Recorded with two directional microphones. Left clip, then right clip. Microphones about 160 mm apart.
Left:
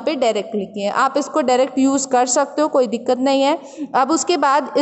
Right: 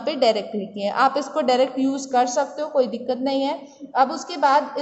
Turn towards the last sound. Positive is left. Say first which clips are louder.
# left 3 dB
turn(degrees=55)  # may be behind; listen again after turning